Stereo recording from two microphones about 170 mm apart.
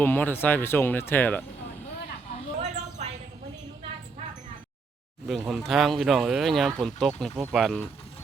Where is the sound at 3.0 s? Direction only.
40° right (ahead or behind).